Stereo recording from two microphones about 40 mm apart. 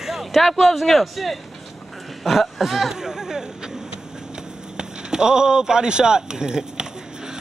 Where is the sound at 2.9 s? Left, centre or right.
Centre.